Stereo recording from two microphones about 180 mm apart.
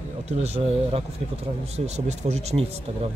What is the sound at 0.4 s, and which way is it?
Speech, 35° right (ahead or behind).